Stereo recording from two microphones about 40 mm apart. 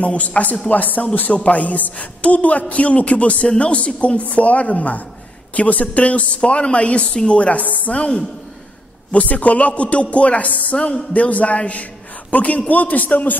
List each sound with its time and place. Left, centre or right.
0.0 s speech: left
9.1 s speech: left